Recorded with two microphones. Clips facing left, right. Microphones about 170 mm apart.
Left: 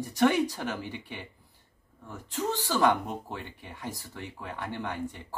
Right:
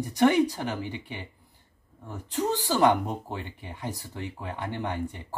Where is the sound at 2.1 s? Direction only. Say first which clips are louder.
Right 4 dB; 15° right (ahead or behind).